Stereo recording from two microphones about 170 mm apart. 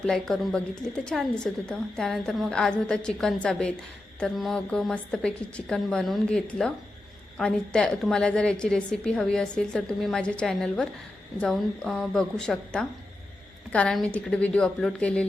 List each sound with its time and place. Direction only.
0.0 s a woman's voice: 5° left (ahead or behind)